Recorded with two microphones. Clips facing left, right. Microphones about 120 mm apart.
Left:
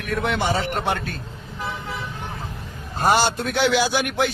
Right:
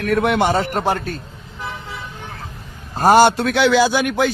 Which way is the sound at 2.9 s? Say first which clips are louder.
Right 7 dB; 40° right (ahead or behind).